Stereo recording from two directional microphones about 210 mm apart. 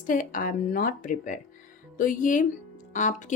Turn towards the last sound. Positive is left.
turn(degrees=35)  # may be behind; listen again after turning